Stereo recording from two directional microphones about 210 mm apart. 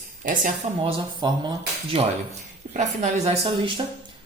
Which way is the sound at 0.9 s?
20° right (ahead or behind).